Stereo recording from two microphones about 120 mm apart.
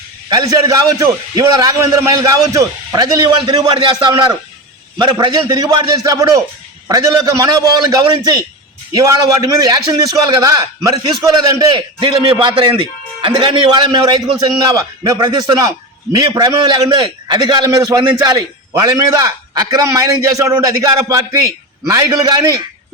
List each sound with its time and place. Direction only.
0.3 s a man's voice: 30° right (ahead or behind)
11.7 s a man's voice: 45° right (ahead or behind)